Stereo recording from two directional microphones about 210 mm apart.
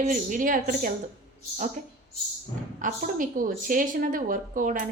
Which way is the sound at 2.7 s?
40° right (ahead or behind).